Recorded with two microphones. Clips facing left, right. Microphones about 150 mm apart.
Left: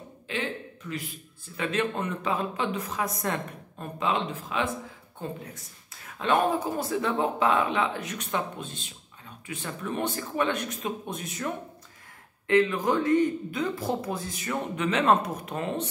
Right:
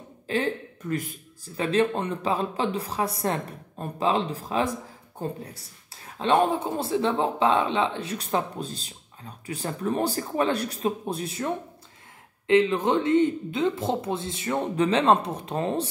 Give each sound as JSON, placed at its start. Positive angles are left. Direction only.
{"t": 0.3, "sound": "a man's voice", "side_deg": -45}
{"t": 1.6, "sound": "speech", "side_deg": -30}